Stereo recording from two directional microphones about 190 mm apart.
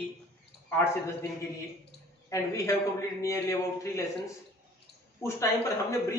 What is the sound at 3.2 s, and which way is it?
A man's voice, 15° left (ahead or behind).